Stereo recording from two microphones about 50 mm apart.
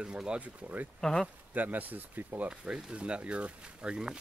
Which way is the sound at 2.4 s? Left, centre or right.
Right.